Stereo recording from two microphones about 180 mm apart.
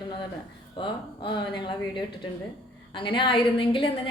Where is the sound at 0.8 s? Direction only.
25° left (ahead or behind).